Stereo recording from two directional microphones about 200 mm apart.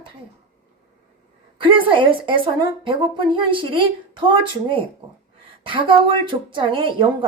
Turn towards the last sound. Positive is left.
turn(degrees=-25)  # may be behind; listen again after turning